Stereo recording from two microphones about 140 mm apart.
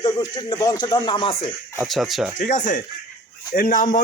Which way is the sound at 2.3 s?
60° left (ahead or behind).